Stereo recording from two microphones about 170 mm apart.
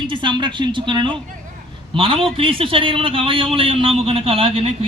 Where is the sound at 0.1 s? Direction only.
25° right (ahead or behind).